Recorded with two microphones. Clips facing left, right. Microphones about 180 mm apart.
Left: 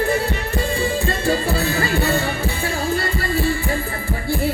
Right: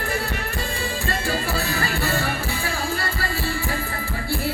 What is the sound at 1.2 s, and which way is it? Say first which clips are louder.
Music: left 7 dB; 20° left (ahead or behind).